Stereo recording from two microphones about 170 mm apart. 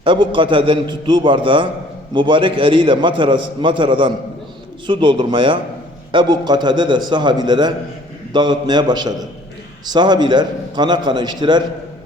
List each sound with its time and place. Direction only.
0.0 s a man's voice: 30° right (ahead or behind)